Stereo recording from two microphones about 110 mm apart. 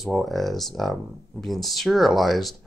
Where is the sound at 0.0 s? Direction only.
Centre (ahead or behind).